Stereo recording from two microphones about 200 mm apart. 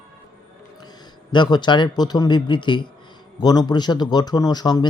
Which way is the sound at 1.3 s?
20° left (ahead or behind).